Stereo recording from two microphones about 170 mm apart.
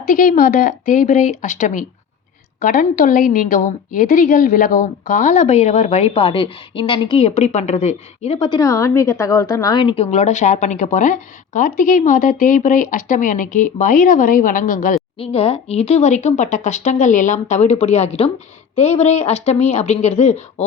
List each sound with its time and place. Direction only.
0.0 s a woman's voice: 55° left (ahead or behind)
15.2 s a woman's voice: 35° left (ahead or behind)